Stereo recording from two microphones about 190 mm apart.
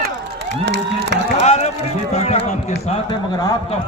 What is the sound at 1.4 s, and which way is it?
A man's voice, 35° left (ahead or behind).